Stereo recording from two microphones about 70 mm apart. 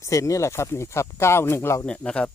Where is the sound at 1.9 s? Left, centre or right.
Centre.